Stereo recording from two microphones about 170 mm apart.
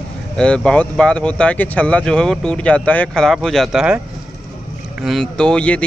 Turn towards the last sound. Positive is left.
turn(degrees=5)  # may be behind; listen again after turning